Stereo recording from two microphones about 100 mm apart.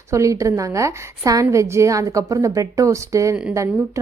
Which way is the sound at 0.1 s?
30° right (ahead or behind).